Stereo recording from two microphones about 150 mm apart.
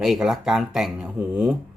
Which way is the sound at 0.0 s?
Centre (ahead or behind).